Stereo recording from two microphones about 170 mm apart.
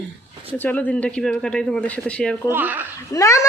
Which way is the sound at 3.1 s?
20° left (ahead or behind).